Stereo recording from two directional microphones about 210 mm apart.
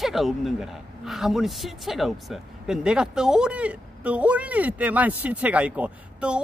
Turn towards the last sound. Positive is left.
turn(degrees=-5)  # may be behind; listen again after turning